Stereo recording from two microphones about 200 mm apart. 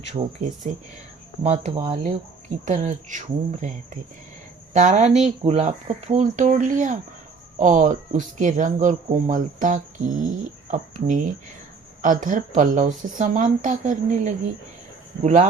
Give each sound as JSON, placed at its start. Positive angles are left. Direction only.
{"t": 0.1, "sound": "speech", "side_deg": -30}
{"t": 4.7, "sound": "speech", "side_deg": -35}